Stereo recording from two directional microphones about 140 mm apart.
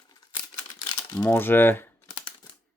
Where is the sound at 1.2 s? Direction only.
15° left (ahead or behind).